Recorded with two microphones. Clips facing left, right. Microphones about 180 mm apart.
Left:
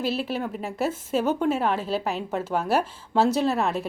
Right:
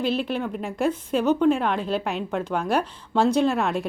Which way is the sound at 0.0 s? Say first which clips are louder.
Right 2 dB; 5° left (ahead or behind).